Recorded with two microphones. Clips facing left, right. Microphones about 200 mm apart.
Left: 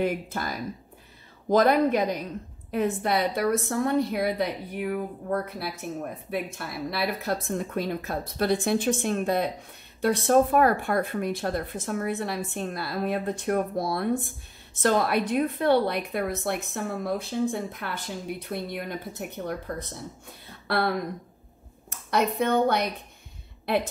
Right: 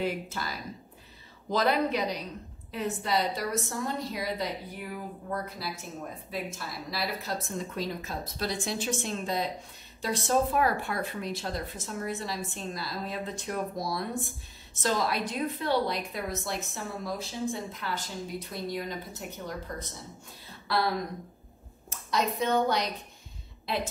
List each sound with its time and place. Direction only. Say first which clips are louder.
0.0 s a woman's voice: left 5 dB; 50° left (ahead or behind)